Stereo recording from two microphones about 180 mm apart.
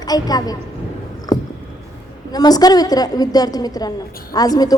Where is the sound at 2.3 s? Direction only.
20° left (ahead or behind).